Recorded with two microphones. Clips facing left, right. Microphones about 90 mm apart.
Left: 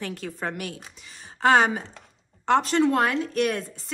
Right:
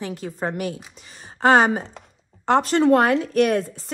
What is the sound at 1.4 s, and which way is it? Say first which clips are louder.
A woman's voice: right 3 dB; 40° right (ahead or behind).